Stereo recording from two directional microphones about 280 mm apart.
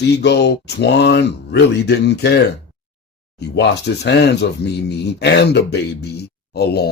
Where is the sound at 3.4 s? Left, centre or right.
Left.